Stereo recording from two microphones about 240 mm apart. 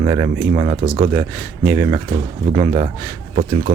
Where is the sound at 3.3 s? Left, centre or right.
Right.